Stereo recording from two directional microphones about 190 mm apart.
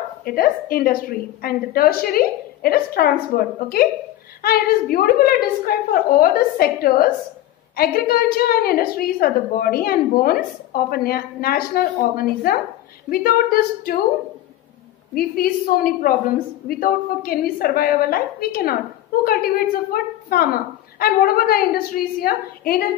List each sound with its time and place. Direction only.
0.2 s a woman's voice: 50° left (ahead or behind)
4.9 s a woman's voice: 50° left (ahead or behind)
15.1 s a woman's voice: 50° left (ahead or behind)